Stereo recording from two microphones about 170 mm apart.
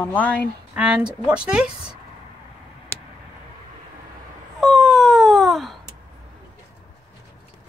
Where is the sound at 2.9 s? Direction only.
15° left (ahead or behind).